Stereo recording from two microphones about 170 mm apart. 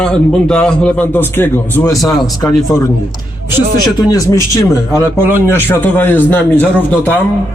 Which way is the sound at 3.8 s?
20° left (ahead or behind).